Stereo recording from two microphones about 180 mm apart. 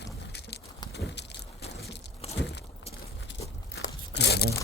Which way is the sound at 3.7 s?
70° left (ahead or behind).